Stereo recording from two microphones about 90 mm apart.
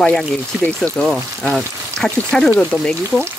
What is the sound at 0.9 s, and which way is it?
Speech, 5° left (ahead or behind).